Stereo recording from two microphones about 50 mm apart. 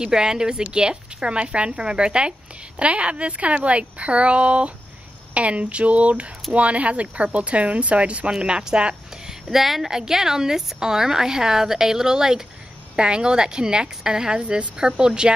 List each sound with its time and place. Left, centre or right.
0.0 s a woman's voice: centre
9.5 s a woman's voice: centre